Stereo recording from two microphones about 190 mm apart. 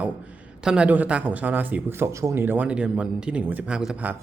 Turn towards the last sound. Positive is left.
turn(degrees=-5)  # may be behind; listen again after turning